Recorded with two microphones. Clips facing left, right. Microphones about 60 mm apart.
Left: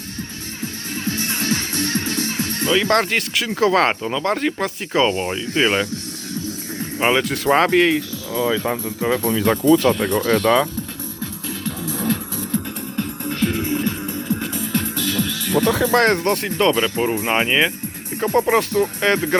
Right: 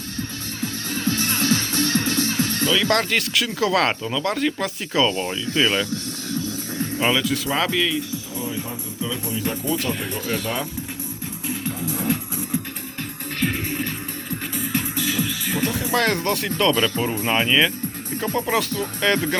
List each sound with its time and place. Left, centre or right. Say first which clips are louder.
0.2 s music: right 1 dB; left
8.4 s speech: left 10 dB; left
10.2 s speech: left 10 dB; left
11.4 s music: right 1 dB; right
13.4 s music: left 4 dB; centre
15.9 s speech: left 5 dB; left
18.4 s speech: left 6 dB; left